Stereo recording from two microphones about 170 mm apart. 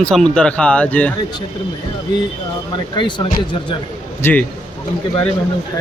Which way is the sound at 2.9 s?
25° left (ahead or behind).